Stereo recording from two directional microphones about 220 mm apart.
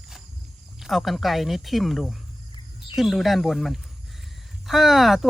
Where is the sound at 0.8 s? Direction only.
Centre (ahead or behind).